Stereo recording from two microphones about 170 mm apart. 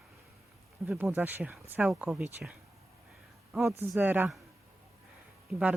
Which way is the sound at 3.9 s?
10° right (ahead or behind).